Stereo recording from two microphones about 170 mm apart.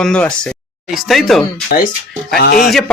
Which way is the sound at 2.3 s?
65° left (ahead or behind).